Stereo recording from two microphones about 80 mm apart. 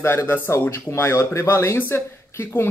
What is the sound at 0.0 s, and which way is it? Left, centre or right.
Speech, left.